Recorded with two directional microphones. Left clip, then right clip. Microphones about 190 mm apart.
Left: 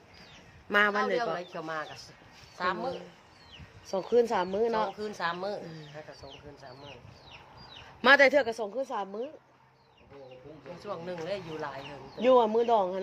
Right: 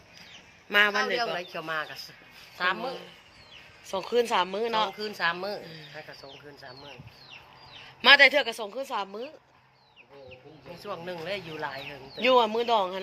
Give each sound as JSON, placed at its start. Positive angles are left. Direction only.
{"t": 0.7, "sound": "speech", "side_deg": 25}
{"t": 1.4, "sound": "speech", "side_deg": -20}
{"t": 3.8, "sound": "speech", "side_deg": 25}
{"t": 4.9, "sound": "speech", "side_deg": -15}
{"t": 8.0, "sound": "speech", "side_deg": 35}
{"t": 10.8, "sound": "speech", "side_deg": -10}
{"t": 12.2, "sound": "speech", "side_deg": 20}